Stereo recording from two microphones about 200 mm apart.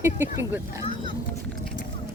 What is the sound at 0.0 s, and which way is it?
Speech, 10° right (ahead or behind).